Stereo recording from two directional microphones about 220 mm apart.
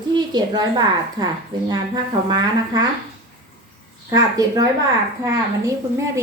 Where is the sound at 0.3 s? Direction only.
20° right (ahead or behind).